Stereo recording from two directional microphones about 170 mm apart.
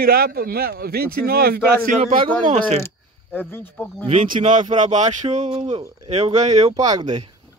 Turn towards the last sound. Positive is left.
turn(degrees=-45)  # may be behind; listen again after turning